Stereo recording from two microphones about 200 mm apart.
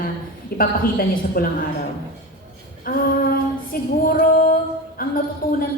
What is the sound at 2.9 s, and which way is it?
Female singing, 45° left (ahead or behind).